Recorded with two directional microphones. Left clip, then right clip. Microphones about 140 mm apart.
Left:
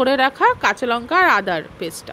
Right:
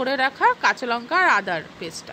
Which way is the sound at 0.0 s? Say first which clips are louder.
Left 4 dB; 50° left (ahead or behind).